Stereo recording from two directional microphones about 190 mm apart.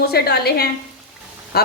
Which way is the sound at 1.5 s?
55° left (ahead or behind).